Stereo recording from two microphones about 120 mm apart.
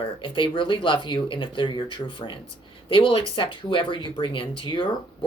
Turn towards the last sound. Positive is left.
turn(degrees=45)  # may be behind; listen again after turning